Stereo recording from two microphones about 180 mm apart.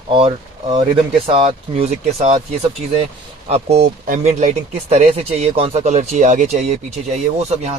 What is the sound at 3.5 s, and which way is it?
Speech, 40° right (ahead or behind).